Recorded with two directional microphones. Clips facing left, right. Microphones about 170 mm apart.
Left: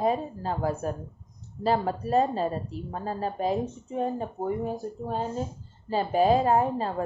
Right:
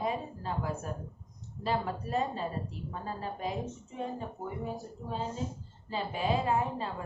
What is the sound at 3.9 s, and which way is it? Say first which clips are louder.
Speech: left 9 dB; 50° left (ahead or behind).